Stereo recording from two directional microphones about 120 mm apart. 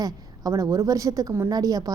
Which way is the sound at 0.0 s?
30° right (ahead or behind).